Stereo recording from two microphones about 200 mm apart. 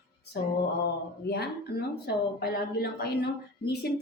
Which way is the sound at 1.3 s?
55° left (ahead or behind).